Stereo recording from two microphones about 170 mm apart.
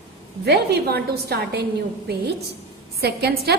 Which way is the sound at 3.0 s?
70° right (ahead or behind).